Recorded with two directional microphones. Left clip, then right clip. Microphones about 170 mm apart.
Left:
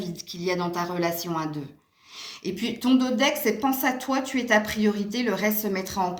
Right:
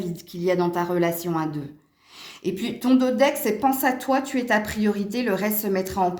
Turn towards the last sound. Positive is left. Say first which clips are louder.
# right 4 dB
turn(degrees=-30)  # may be behind; listen again after turning